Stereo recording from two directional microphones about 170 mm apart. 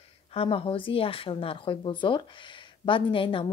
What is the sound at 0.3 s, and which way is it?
Speech, 35° left (ahead or behind).